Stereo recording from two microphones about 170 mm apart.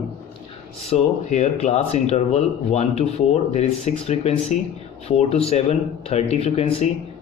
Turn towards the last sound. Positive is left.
turn(degrees=35)  # may be behind; listen again after turning